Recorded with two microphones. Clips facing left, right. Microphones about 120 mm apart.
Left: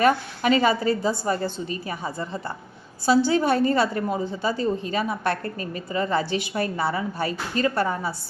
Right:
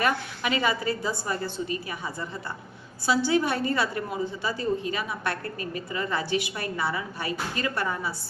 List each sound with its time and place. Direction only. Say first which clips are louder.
0.0 s a woman's voice: left 6 dB; 35° left (ahead or behind)